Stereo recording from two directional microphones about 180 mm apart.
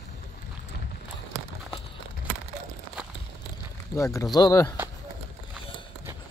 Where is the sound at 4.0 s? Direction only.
15° left (ahead or behind).